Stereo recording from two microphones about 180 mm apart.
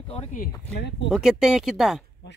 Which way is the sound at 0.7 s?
65° left (ahead or behind).